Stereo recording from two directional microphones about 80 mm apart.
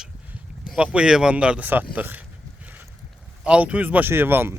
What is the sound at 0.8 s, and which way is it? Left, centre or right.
Speech, centre.